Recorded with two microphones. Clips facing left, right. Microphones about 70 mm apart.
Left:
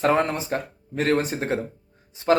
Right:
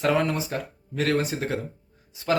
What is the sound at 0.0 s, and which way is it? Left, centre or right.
Speech, left.